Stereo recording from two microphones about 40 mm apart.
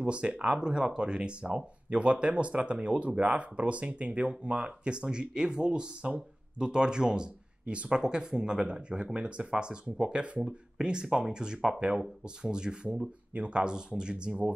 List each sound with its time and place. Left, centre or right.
0.0 s speech: right
13.3 s speech: right